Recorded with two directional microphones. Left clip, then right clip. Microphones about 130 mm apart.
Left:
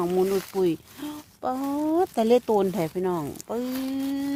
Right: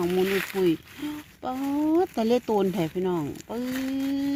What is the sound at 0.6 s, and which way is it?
Speech, 15° left (ahead or behind).